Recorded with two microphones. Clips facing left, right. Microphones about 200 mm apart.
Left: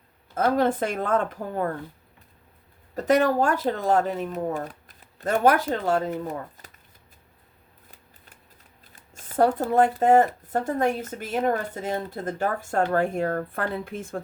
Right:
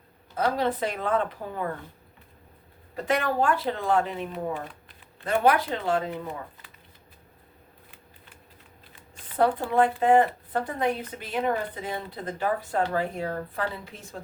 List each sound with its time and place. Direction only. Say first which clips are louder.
0.3 s speech: left 4 dB; 50° left (ahead or behind)
2.9 s speech: left 6 dB; 40° left (ahead or behind)
7.9 s shuffling cards: right 1 dB; 40° left (ahead or behind)
9.0 s speech: left 2 dB; 45° left (ahead or behind)